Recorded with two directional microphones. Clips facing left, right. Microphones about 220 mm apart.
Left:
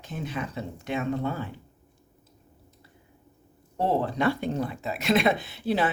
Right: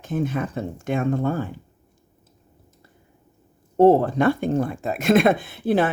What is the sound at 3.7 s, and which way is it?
Speech, 50° right (ahead or behind).